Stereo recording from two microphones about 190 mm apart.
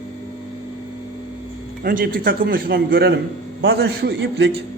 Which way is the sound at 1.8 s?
45° right (ahead or behind).